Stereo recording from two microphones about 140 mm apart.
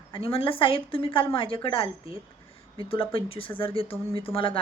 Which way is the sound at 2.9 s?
40° left (ahead or behind).